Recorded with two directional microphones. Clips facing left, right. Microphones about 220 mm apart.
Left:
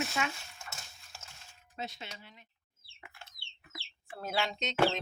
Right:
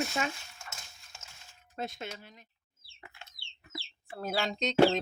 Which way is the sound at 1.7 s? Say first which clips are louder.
Right 5 dB; 50° right (ahead or behind).